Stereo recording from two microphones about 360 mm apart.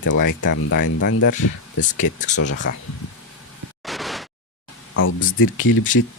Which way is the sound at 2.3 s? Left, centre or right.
Left.